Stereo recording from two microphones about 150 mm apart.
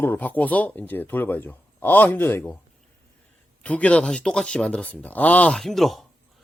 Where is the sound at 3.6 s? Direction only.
10° left (ahead or behind).